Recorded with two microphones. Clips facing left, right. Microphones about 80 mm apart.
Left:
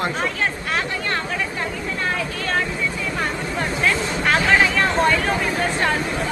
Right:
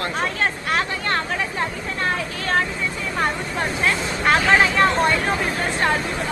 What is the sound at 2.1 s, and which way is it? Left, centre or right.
Vehicle, right.